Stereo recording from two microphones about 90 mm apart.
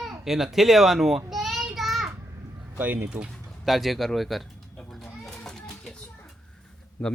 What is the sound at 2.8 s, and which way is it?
Speech, 15° right (ahead or behind).